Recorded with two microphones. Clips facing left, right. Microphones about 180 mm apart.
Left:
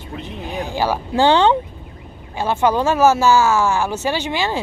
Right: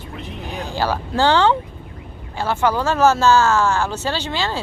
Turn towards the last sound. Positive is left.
turn(degrees=15)  # may be behind; listen again after turning